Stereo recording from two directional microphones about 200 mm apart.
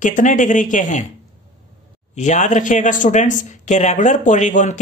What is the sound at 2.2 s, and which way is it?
Speech, 40° left (ahead or behind).